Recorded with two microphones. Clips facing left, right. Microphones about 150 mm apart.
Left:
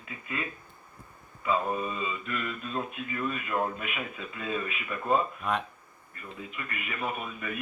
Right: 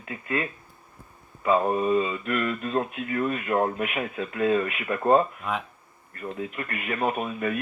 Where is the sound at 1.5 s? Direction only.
55° right (ahead or behind).